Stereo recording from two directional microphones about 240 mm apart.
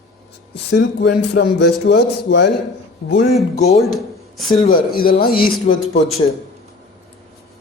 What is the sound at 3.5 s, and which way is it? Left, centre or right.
Speech, left.